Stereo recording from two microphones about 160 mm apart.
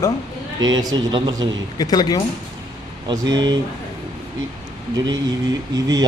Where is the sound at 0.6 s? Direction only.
25° right (ahead or behind).